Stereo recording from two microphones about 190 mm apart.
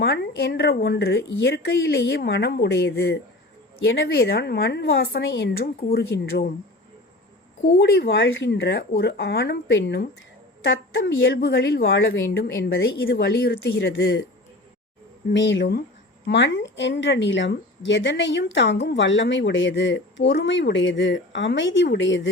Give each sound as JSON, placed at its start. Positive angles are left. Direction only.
{"t": 0.0, "sound": "a woman's voice", "side_deg": 60}
{"t": 7.8, "sound": "a woman's voice", "side_deg": 60}
{"t": 12.6, "sound": "a woman's voice", "side_deg": 55}
{"t": 15.3, "sound": "a woman's voice", "side_deg": 65}